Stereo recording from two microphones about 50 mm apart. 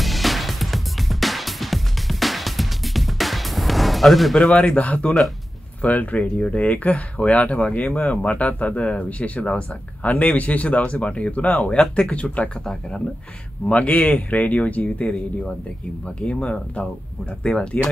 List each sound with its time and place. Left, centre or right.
0.0 s music: centre
4.4 s speech: left
13.7 s speech: left
16.2 s speech: centre